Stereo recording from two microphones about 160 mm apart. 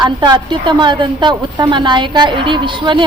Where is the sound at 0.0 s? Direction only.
30° right (ahead or behind).